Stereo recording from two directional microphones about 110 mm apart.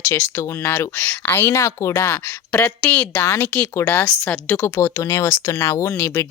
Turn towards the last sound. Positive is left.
turn(degrees=25)  # may be behind; listen again after turning